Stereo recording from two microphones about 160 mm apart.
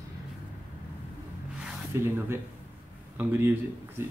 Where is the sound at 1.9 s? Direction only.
15° right (ahead or behind).